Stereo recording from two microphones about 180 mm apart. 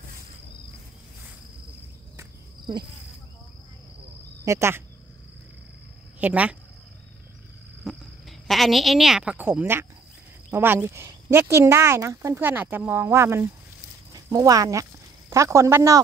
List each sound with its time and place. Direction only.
2.1 s cricket: 25° right (ahead or behind)
4.5 s speech: 15° right (ahead or behind)
6.1 s speech: 5° right (ahead or behind)
7.8 s a woman's voice: centre (ahead or behind); by 16.0 s 15° right (ahead or behind)